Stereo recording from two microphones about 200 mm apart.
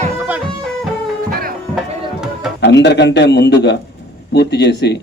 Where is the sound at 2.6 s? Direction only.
60° left (ahead or behind).